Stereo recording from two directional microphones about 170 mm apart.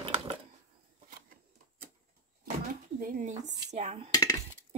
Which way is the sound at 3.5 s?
40° right (ahead or behind).